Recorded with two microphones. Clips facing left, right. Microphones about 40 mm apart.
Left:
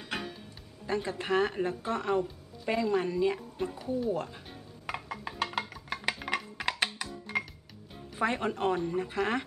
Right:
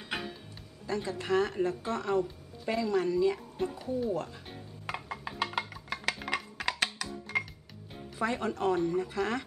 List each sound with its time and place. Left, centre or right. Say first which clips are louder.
0.0 s music: even; centre
0.8 s speech: left 1 dB; left
3.3 s speech: right 1 dB; centre
4.1 s speech: left 1 dB; left
4.8 s music: left 1 dB; centre
8.2 s speech: left 1 dB; left